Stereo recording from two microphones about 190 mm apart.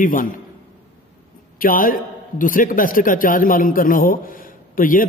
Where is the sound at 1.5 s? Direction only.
45° left (ahead or behind).